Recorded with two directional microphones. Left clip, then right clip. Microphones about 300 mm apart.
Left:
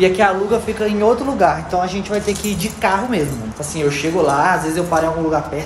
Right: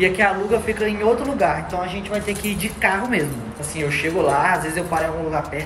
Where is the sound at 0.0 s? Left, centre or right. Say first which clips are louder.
Left 4 dB; centre.